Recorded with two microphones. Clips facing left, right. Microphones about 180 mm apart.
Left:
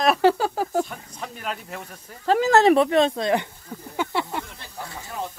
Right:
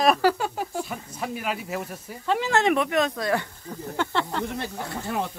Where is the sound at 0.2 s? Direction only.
25° left (ahead or behind).